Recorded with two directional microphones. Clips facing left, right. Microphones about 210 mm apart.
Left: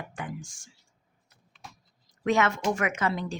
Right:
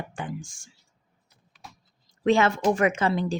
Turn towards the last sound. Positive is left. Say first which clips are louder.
# right 5 dB
turn(degrees=-30)  # may be behind; listen again after turning